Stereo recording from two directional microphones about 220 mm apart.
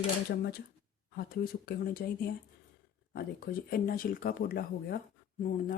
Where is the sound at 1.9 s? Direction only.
45° left (ahead or behind).